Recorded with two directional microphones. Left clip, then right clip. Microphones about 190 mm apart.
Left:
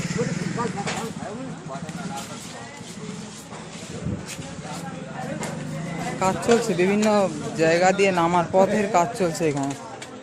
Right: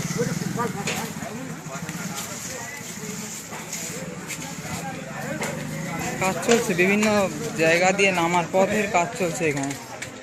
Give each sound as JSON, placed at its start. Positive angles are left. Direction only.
{"t": 6.1, "sound": "speech", "side_deg": 15}